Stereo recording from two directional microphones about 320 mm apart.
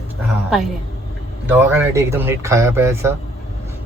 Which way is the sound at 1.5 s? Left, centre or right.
Centre.